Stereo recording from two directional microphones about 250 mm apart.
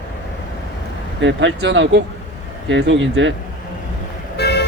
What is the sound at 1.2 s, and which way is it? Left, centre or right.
Speech, right.